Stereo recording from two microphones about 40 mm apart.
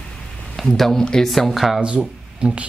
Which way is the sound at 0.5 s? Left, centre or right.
Centre.